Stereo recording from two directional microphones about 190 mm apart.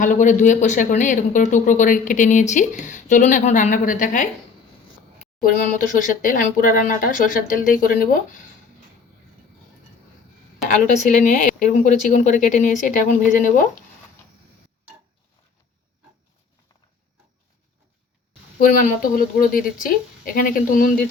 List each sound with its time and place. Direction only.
0.0 s speech: 40° left (ahead or behind)
5.4 s speech: 45° left (ahead or behind)
11.0 s speech: 40° left (ahead or behind)
19.1 s speech: 50° left (ahead or behind)